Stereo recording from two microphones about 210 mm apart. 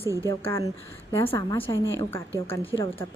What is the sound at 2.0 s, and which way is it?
Speech, 10° left (ahead or behind).